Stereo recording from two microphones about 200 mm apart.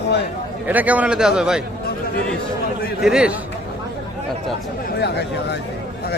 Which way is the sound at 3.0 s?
5° right (ahead or behind).